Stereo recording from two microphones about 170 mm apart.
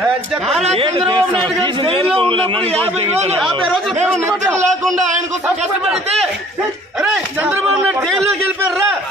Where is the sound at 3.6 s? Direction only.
Centre (ahead or behind).